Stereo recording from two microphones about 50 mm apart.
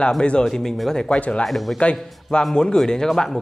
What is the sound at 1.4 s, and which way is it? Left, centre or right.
Speech, centre.